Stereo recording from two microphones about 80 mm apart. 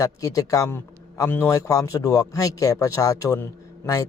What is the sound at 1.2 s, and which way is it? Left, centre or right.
Speech, left.